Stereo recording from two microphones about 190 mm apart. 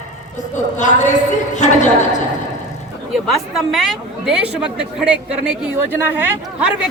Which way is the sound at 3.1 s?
Centre (ahead or behind).